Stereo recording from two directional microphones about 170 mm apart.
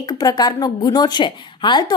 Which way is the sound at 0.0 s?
25° left (ahead or behind).